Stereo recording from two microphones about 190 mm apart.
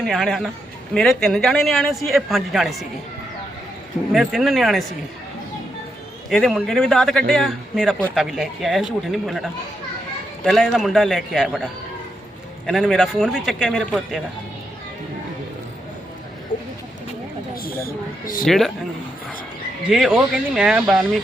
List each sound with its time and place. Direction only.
0.0 s speech: centre (ahead or behind)
4.1 s speech: centre (ahead or behind)
6.3 s speech: centre (ahead or behind)
12.6 s speech: centre (ahead or behind)
17.6 s speech: 50° left (ahead or behind)
18.4 s speech: centre (ahead or behind)
19.9 s speech: 5° right (ahead or behind)